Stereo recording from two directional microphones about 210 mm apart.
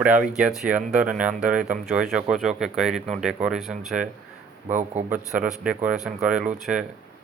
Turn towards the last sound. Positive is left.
turn(degrees=-5)  # may be behind; listen again after turning